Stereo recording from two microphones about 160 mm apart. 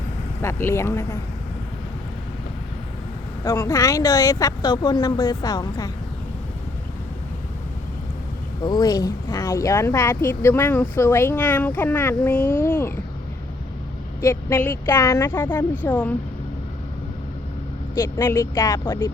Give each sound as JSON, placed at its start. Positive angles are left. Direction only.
{"t": 0.4, "sound": "speech", "side_deg": 15}
{"t": 3.4, "sound": "speech", "side_deg": 20}
{"t": 8.6, "sound": "speech", "side_deg": 25}
{"t": 14.2, "sound": "speech", "side_deg": 15}
{"t": 18.0, "sound": "speech", "side_deg": 15}